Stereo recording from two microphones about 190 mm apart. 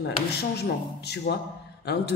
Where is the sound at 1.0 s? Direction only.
60° left (ahead or behind).